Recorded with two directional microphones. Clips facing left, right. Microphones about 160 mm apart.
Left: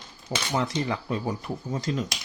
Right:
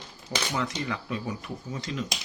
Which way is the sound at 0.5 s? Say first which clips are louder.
Left 6 dB; 35° left (ahead or behind).